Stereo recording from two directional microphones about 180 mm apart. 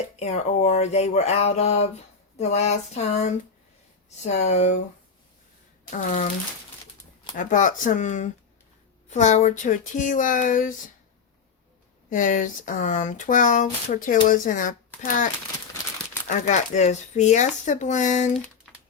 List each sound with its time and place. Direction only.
0.2 s speech: 40° left (ahead or behind)
5.9 s speech: 45° left (ahead or behind)
7.3 s speech: 45° left (ahead or behind)
12.1 s speech: 45° left (ahead or behind)
16.5 s speech: 40° left (ahead or behind)